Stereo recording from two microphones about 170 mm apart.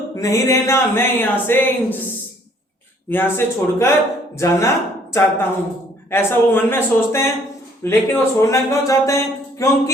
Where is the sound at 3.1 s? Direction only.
15° left (ahead or behind).